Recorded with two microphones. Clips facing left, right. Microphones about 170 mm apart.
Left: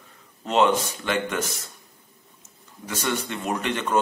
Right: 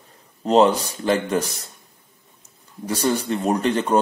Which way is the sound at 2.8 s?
35° right (ahead or behind).